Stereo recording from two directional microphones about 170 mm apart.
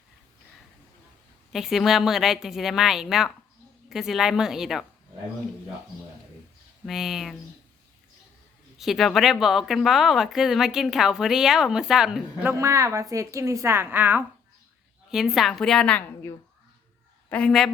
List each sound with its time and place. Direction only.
1.5 s speech: centre (ahead or behind)
6.8 s speech: centre (ahead or behind)
8.8 s speech: centre (ahead or behind)
12.5 s a woman's voice: 20° right (ahead or behind); by 17.7 s 5° left (ahead or behind)